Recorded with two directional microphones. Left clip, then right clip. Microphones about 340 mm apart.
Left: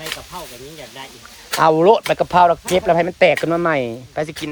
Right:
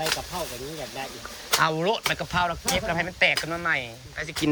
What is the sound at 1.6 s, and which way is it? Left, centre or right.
Speech, centre.